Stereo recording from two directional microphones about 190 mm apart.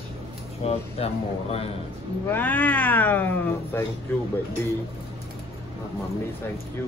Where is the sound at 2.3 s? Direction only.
10° left (ahead or behind).